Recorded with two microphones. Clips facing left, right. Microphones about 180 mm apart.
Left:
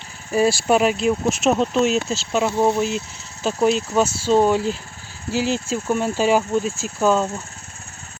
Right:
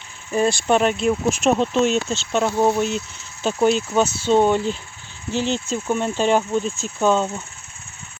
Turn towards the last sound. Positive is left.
turn(degrees=5)  # may be behind; listen again after turning